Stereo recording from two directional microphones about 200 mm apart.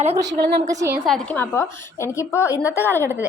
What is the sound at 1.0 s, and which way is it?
A woman's voice, 5° left (ahead or behind).